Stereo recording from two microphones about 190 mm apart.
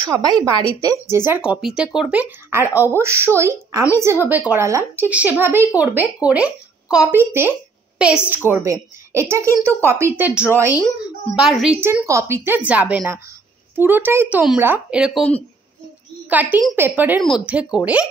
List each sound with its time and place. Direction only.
0.0 s a woman's voice: 20° right (ahead or behind); by 18.0 s 5° right (ahead or behind)